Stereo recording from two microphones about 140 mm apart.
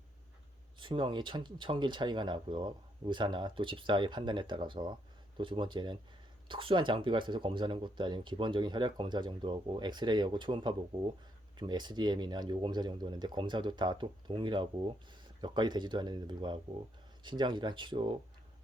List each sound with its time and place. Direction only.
0.8 s speech: 35° right (ahead or behind)